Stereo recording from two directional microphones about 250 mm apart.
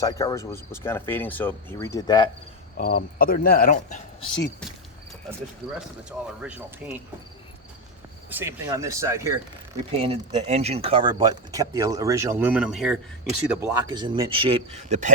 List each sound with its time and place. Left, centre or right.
0.0 s speech: centre
2.7 s speech: left
4.2 s speech: left
6.1 s speech: centre
8.3 s speech: centre
10.0 s speech: right; by 13.0 s centre
13.5 s speech: centre; by 15.1 s right